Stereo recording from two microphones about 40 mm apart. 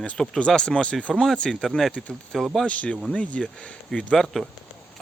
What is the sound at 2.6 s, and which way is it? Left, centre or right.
Speech, left.